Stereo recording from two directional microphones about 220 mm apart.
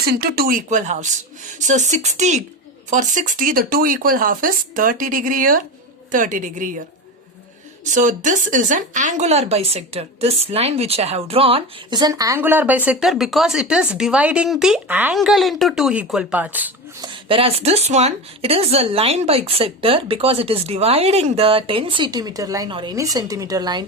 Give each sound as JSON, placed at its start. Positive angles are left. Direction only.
{"t": 0.0, "sound": "speech", "side_deg": -45}
{"t": 7.9, "sound": "speech", "side_deg": -35}
{"t": 17.0, "sound": "speech", "side_deg": -20}